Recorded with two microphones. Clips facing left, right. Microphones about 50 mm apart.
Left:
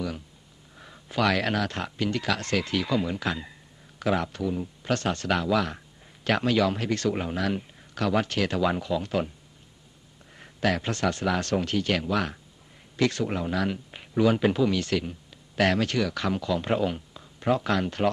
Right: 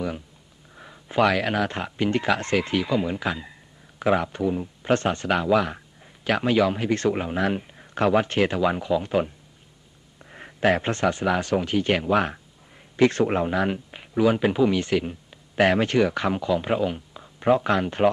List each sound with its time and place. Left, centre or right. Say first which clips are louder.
1.2 s speech: right 3 dB; centre
7.2 s speech: right 3 dB; centre
8.5 s speech: right 3 dB; centre
10.3 s speech: right 5 dB; right
13.8 s speech: left 1 dB; centre
17.2 s speech: right 5 dB; centre